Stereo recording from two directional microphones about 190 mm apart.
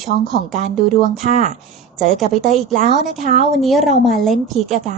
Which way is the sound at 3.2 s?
40° right (ahead or behind).